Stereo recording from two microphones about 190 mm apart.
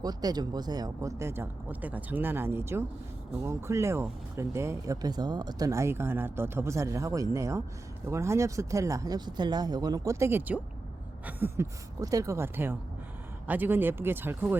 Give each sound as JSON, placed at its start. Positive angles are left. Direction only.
{"t": 0.0, "sound": "speech", "side_deg": -20}